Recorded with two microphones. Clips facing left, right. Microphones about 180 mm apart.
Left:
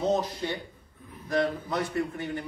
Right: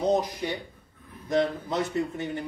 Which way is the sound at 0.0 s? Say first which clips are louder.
Right 2 dB; 15° right (ahead or behind).